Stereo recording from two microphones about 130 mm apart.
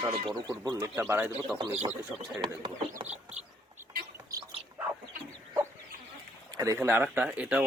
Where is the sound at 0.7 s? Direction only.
20° right (ahead or behind).